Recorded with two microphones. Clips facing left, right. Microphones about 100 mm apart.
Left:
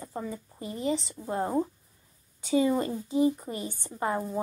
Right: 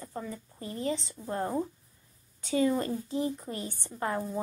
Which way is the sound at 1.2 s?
15° left (ahead or behind).